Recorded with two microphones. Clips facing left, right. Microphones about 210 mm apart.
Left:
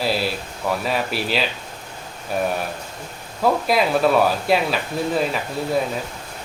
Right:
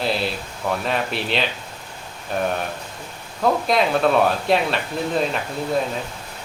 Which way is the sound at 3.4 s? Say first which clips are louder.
Even; 5° left (ahead or behind).